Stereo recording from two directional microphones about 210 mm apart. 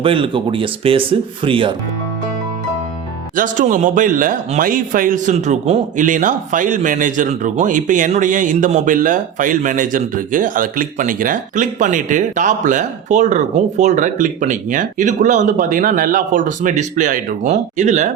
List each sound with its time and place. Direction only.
0.0 s speech: 25° right (ahead or behind)
3.3 s a man's voice: 40° right (ahead or behind)